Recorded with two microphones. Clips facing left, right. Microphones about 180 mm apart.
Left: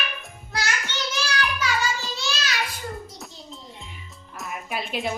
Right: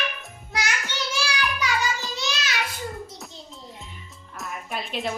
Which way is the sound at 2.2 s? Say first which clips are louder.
Even; 15° right (ahead or behind).